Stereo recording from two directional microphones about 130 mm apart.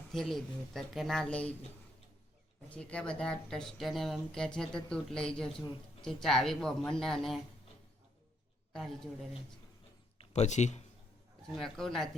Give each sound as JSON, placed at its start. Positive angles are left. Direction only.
{"t": 0.1, "sound": "speech", "side_deg": 0}
{"t": 2.6, "sound": "speech", "side_deg": 10}
{"t": 8.7, "sound": "a woman's voice", "side_deg": 5}
{"t": 10.2, "sound": "speech", "side_deg": 60}
{"t": 11.5, "sound": "speech", "side_deg": 5}